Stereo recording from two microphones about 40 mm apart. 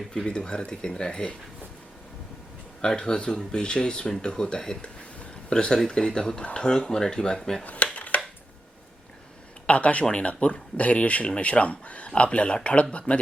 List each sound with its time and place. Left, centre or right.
0.3 s speech: left
2.8 s speech: centre
4.8 s a sound: left
5.9 s speech: left
7.6 s speech: left
7.9 s a sound: left
9.6 s speech: left